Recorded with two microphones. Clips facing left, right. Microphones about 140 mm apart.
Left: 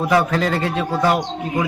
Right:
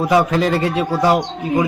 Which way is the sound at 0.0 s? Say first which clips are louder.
Right 2 dB; 20° right (ahead or behind).